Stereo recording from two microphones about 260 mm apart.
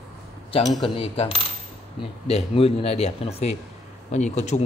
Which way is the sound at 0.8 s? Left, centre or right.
Left.